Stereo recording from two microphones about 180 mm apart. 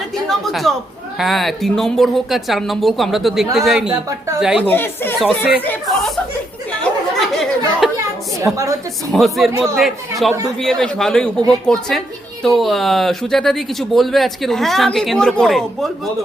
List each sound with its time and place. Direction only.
0.3 s a woman's voice: centre (ahead or behind)
4.6 s speech: 10° left (ahead or behind)
5.6 s chatter: centre (ahead or behind)
7.2 s chatter: centre (ahead or behind)
9.1 s a woman's voice: centre (ahead or behind)
9.5 s speech: 15° right (ahead or behind)
9.7 s a woman's voice: centre (ahead or behind)